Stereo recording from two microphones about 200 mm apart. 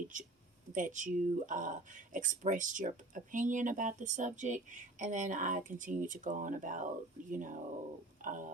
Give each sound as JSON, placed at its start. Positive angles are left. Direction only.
{"t": 0.7, "sound": "speech", "side_deg": -40}